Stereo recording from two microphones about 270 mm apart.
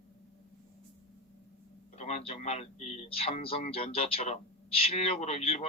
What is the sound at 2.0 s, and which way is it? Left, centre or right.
Speech, left.